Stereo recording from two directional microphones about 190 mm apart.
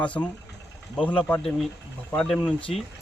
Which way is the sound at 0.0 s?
5° left (ahead or behind).